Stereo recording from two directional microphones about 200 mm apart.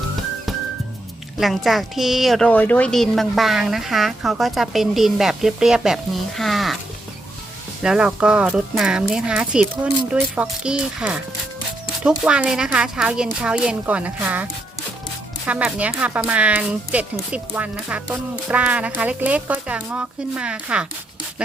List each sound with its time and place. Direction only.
1.4 s a woman's voice: centre (ahead or behind)
7.8 s a woman's voice: 5° right (ahead or behind)